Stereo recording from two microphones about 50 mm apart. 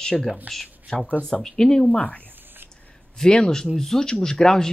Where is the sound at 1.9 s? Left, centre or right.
Left.